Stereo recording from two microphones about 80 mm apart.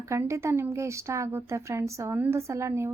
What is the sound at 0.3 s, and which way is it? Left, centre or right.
A woman's voice, right.